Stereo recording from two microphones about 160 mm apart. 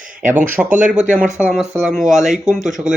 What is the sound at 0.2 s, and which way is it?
Speech, 55° right (ahead or behind).